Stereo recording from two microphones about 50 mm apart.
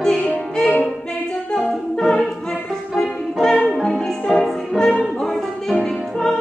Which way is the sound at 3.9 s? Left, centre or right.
Centre.